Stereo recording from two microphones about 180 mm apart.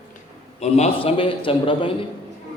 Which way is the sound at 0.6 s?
35° left (ahead or behind).